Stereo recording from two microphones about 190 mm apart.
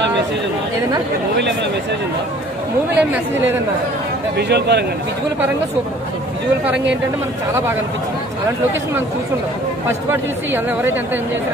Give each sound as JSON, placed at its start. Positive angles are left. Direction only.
{"t": 3.0, "sound": "speech", "side_deg": -10}
{"t": 4.4, "sound": "a man's voice", "side_deg": -60}
{"t": 10.1, "sound": "speech", "side_deg": -10}